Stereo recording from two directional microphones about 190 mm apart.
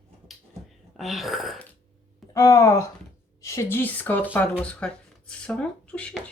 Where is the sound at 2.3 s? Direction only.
15° left (ahead or behind).